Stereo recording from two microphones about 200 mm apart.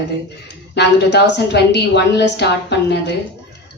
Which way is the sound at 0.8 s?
55° left (ahead or behind).